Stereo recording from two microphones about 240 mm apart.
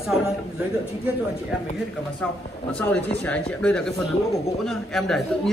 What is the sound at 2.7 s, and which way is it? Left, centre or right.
Speech, centre.